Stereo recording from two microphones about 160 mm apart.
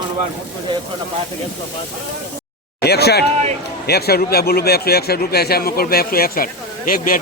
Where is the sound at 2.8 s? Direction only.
90° left; by 7.1 s 60° left (ahead or behind).